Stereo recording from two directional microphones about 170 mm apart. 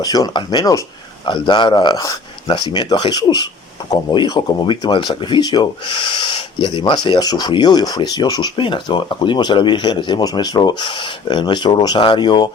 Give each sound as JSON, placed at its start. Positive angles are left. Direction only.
{"t": 0.0, "sound": "speech", "side_deg": 20}